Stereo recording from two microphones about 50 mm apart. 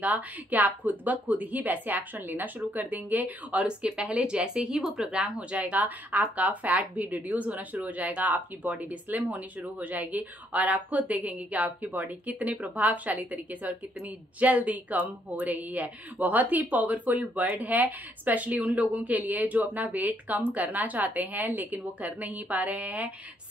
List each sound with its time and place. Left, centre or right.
0.0 s a woman's voice: right
3.6 s speech: centre
5.7 s a woman's voice: right